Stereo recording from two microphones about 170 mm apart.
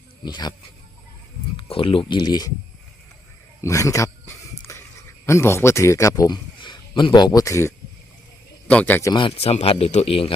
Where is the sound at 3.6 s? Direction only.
20° left (ahead or behind).